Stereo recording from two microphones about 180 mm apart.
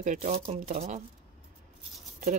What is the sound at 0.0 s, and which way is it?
Speech, 45° right (ahead or behind).